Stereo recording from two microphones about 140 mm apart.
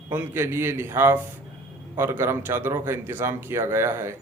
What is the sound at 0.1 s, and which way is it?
A man's voice, 15° right (ahead or behind).